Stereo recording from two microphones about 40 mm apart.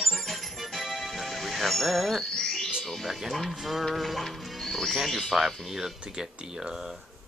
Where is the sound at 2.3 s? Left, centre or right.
Centre.